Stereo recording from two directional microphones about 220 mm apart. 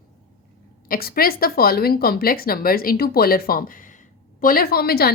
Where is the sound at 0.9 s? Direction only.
45° left (ahead or behind).